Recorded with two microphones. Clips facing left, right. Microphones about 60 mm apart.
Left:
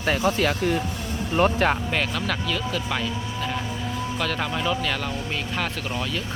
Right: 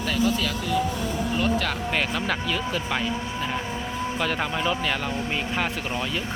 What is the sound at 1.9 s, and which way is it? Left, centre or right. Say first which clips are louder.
Speech: even; centre.